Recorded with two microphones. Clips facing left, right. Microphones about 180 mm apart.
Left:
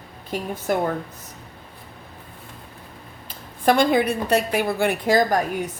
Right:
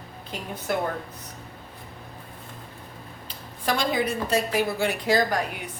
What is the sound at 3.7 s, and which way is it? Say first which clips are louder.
A woman's voice: left 7 dB; 55° left (ahead or behind).